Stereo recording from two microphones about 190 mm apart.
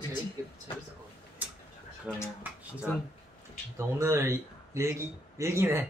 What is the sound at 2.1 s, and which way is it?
Speech, 5° right (ahead or behind).